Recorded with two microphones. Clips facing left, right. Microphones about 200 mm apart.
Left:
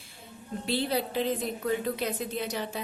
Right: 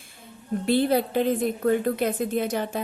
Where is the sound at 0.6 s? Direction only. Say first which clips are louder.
Right 7 dB; 50° right (ahead or behind).